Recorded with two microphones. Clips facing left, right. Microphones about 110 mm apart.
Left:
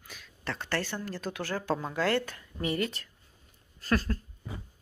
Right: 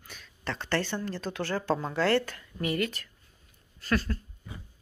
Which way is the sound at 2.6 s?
25° left (ahead or behind).